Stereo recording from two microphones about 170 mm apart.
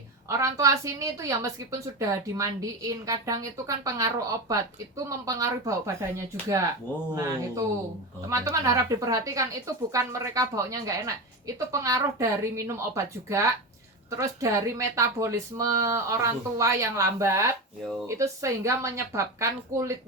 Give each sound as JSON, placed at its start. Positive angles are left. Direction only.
{"t": 0.3, "sound": "speech", "side_deg": -20}